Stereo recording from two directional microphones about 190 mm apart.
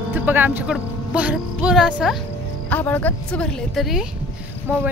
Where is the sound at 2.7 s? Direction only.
10° left (ahead or behind); by 4.8 s 10° right (ahead or behind).